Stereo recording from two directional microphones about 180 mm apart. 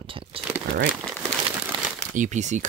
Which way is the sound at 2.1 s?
45° right (ahead or behind).